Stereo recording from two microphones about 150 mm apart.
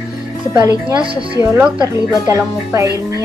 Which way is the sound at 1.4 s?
15° right (ahead or behind).